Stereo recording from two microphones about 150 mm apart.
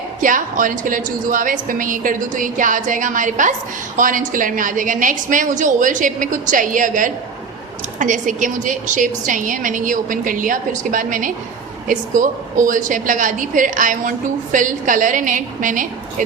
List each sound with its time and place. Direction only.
0.2 s a woman's voice: 60° right (ahead or behind)